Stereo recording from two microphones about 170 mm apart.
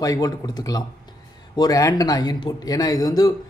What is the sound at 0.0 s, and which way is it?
Speech, 20° left (ahead or behind).